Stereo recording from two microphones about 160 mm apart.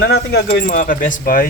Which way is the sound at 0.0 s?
75° left (ahead or behind).